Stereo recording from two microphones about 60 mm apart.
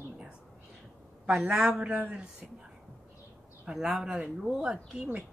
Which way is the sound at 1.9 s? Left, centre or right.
Right.